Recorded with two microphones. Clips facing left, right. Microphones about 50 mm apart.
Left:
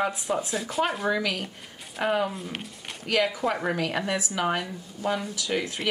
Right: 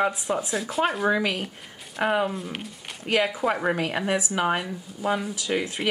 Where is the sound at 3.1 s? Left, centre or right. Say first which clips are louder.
Right 2 dB; centre.